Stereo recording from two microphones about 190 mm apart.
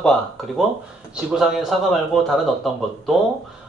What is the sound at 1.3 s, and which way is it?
A man's voice, centre (ahead or behind).